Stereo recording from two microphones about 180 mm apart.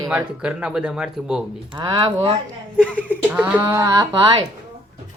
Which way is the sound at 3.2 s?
10° right (ahead or behind).